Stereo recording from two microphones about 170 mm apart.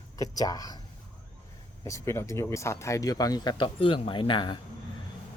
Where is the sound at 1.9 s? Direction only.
15° left (ahead or behind).